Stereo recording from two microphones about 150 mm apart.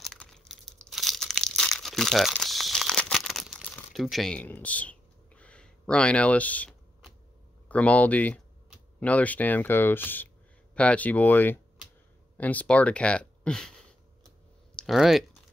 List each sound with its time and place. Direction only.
0.0 s crumpling: 5° left (ahead or behind)
7.6 s speech: 10° left (ahead or behind)
14.8 s speech: centre (ahead or behind)